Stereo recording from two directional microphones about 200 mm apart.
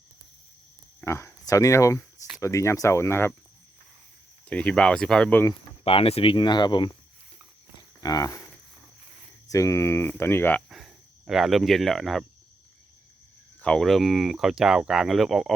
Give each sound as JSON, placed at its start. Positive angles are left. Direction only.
{"t": 1.0, "sound": "speech", "side_deg": 15}
{"t": 4.4, "sound": "speech", "side_deg": 5}
{"t": 5.8, "sound": "speech", "side_deg": 30}
{"t": 7.8, "sound": "livestock", "side_deg": 20}
{"t": 9.5, "sound": "speech", "side_deg": 15}
{"t": 10.7, "sound": "speech", "side_deg": 0}
{"t": 13.6, "sound": "speech", "side_deg": 5}